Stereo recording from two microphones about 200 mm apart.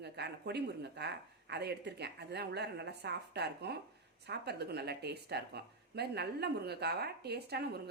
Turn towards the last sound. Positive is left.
turn(degrees=-55)  # may be behind; listen again after turning